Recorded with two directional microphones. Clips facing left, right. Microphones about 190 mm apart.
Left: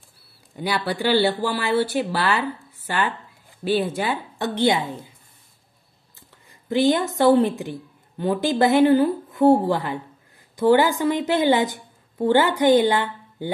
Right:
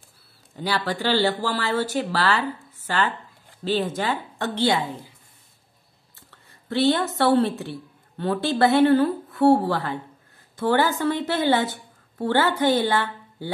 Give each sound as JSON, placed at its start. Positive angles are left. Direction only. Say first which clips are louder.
{"t": 0.6, "sound": "speech", "louder": "left 1 dB", "side_deg": 15}
{"t": 3.6, "sound": "speech", "louder": "left 2 dB", "side_deg": 10}
{"t": 6.1, "sound": "a woman's voice", "louder": "left 1 dB", "side_deg": 15}